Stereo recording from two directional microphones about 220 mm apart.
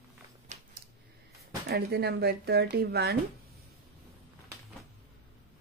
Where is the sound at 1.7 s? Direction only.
45° right (ahead or behind).